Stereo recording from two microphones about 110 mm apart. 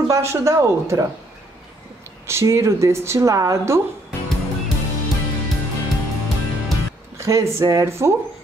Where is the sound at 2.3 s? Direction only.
25° right (ahead or behind).